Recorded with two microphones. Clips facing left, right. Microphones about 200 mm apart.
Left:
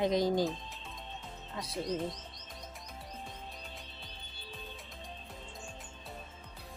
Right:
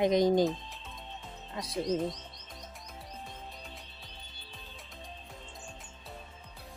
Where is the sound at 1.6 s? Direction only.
15° right (ahead or behind).